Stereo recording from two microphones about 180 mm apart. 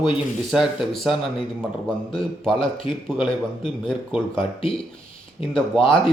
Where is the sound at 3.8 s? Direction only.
5° left (ahead or behind).